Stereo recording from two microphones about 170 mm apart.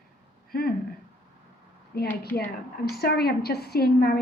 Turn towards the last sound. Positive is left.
turn(degrees=65)  # may be behind; listen again after turning